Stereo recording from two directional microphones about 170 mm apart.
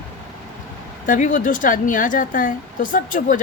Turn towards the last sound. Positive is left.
turn(degrees=50)  # may be behind; listen again after turning